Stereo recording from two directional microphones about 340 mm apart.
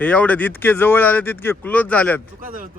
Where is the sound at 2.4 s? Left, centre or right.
Right.